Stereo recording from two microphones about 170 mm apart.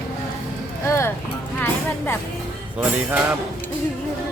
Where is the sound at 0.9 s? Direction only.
15° left (ahead or behind).